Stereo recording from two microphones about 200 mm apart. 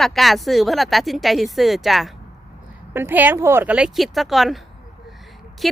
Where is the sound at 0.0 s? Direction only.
Centre (ahead or behind).